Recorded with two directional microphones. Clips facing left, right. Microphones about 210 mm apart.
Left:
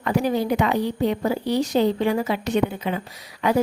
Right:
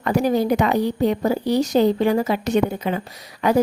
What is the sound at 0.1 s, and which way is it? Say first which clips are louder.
Speech: right 3 dB; 40° right (ahead or behind).